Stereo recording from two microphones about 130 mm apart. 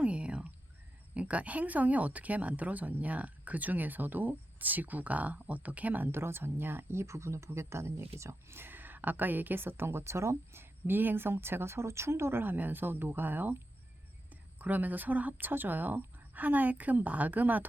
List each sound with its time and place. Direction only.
0.0 s a sound: 10° right (ahead or behind)
1.1 s speech: 10° right (ahead or behind)
14.6 s speech: 15° right (ahead or behind)